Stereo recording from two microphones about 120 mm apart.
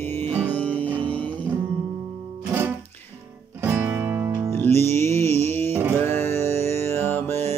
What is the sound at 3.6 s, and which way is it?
Music, 20° right (ahead or behind).